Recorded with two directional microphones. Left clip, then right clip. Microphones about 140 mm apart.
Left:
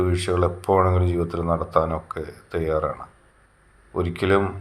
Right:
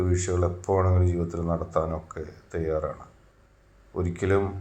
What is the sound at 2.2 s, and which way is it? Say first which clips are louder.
Speech: left 5 dB; 45° left (ahead or behind).